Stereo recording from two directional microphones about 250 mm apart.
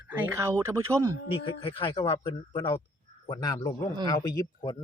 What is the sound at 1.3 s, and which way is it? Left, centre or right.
Speech, left.